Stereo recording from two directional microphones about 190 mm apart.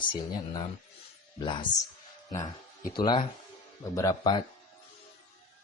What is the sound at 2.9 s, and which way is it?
Speech, 25° left (ahead or behind).